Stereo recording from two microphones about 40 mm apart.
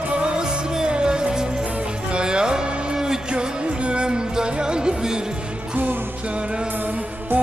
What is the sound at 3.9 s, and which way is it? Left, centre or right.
Music, right.